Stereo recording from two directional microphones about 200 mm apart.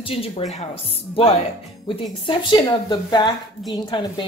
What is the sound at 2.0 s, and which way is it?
Speech, 25° left (ahead or behind).